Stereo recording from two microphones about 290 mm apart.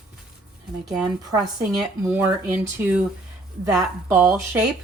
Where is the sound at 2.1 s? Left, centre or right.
Centre.